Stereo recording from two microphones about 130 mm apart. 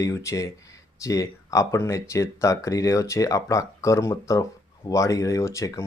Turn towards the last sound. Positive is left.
turn(degrees=25)  # may be behind; listen again after turning